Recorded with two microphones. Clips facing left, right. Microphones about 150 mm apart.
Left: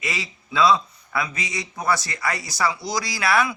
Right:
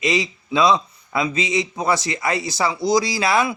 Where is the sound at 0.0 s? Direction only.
20° right (ahead or behind).